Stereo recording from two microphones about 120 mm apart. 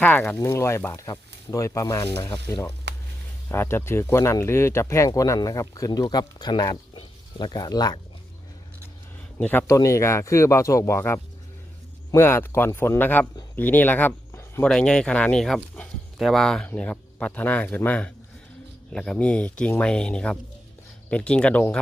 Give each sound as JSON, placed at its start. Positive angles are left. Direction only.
{"t": 0.0, "sound": "speech", "side_deg": 15}
{"t": 9.4, "sound": "speech", "side_deg": 15}
{"t": 9.7, "sound": "speech", "side_deg": 25}
{"t": 14.6, "sound": "speech", "side_deg": 5}